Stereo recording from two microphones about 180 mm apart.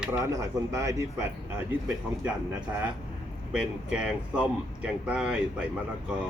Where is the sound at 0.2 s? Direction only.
20° right (ahead or behind).